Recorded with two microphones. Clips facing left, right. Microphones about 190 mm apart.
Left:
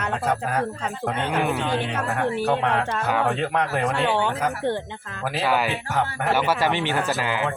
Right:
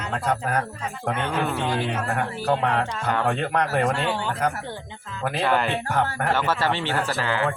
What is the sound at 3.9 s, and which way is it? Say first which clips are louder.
Speech: left 3 dB; 65° left (ahead or behind).